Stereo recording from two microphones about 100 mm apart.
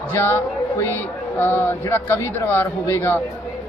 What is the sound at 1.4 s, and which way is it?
A man's voice, 20° left (ahead or behind).